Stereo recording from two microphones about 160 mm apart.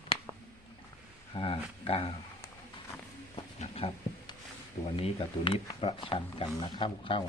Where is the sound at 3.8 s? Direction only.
35° left (ahead or behind).